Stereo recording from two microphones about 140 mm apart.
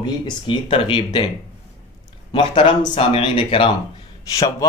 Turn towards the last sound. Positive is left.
turn(degrees=25)  # may be behind; listen again after turning